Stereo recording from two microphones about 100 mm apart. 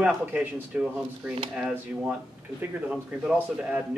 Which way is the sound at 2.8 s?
10° right (ahead or behind).